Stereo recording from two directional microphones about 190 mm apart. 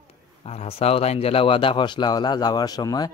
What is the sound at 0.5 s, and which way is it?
A man's voice, 30° left (ahead or behind).